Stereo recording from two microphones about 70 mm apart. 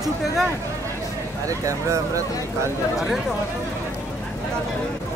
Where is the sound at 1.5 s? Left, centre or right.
Right.